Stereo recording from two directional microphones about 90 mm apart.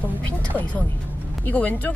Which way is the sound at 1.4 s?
20° left (ahead or behind).